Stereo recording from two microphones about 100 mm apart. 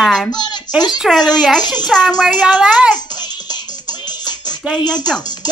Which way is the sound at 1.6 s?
45° left (ahead or behind).